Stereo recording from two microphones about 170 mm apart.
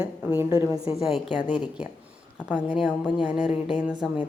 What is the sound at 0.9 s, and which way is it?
A woman's voice, centre (ahead or behind).